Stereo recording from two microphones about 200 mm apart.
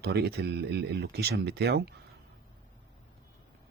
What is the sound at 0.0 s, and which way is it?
Speech, 55° right (ahead or behind).